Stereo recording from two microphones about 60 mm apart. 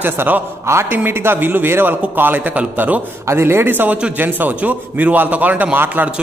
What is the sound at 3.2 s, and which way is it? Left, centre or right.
A woman's voice, right.